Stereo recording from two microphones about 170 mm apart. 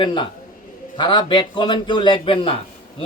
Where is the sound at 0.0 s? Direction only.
30° left (ahead or behind).